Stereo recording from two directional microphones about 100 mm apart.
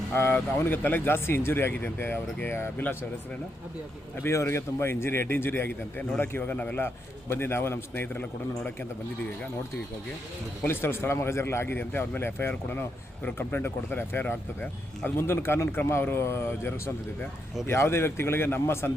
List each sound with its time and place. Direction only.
0.1 s speech: 25° left (ahead or behind)
4.2 s a man's voice: 30° left (ahead or behind)
10.7 s speech: 25° left (ahead or behind)